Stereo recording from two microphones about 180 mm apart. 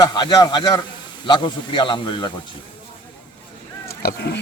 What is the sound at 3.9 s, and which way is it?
Speech, 60° left (ahead or behind).